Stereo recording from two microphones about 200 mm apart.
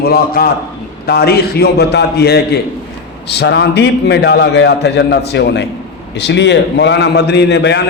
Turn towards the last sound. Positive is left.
turn(degrees=60)  # may be behind; listen again after turning